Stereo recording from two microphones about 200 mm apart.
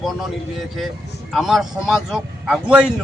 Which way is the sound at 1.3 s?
Centre (ahead or behind).